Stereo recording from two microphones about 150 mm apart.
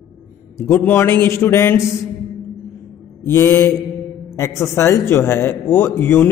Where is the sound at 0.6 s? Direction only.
15° left (ahead or behind).